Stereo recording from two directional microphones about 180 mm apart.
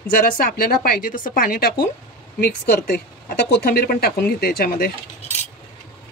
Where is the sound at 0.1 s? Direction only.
55° left (ahead or behind).